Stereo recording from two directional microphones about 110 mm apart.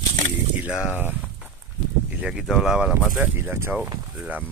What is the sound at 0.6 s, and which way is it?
Speech, 10° right (ahead or behind).